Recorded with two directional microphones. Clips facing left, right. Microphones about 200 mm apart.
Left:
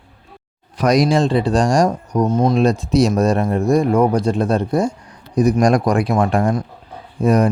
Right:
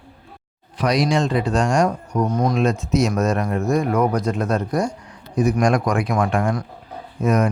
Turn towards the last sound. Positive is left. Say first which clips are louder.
# left 4 dB
turn(degrees=35)  # may be behind; listen again after turning